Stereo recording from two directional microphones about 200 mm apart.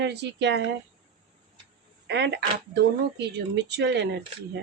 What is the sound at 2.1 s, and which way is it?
Speech, 60° right (ahead or behind).